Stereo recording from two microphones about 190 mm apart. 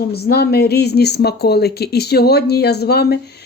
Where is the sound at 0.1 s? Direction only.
55° left (ahead or behind).